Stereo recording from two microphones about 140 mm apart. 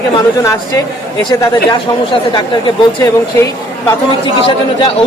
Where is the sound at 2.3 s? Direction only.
30° left (ahead or behind).